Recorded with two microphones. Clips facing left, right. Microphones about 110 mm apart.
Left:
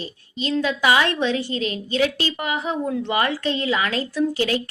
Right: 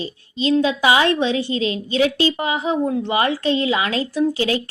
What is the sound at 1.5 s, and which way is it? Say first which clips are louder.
Speech: right 3 dB; 45° left (ahead or behind).